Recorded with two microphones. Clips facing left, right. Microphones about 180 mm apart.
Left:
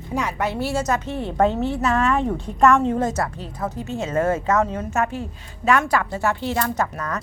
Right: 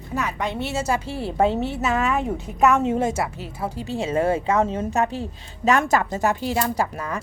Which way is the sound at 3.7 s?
30° right (ahead or behind).